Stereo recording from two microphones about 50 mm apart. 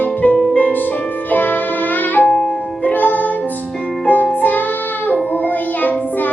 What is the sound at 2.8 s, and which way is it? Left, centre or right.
Music, left.